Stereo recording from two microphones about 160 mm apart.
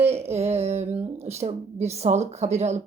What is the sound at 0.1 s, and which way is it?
Speech, 40° right (ahead or behind).